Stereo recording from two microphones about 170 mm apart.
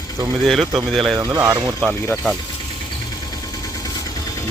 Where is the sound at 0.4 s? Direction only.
Centre (ahead or behind).